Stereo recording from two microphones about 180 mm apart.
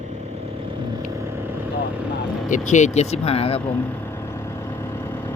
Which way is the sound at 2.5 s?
40° left (ahead or behind).